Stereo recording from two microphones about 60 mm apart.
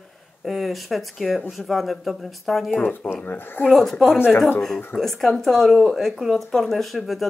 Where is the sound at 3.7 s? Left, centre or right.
Centre.